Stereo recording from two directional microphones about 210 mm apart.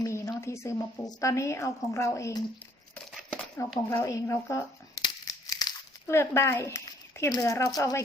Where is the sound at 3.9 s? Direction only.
15° left (ahead or behind).